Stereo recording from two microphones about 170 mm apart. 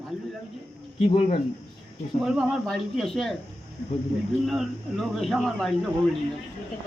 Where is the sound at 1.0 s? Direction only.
40° left (ahead or behind).